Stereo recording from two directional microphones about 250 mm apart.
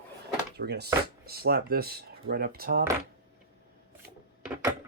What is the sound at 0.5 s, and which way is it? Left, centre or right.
Speech, right.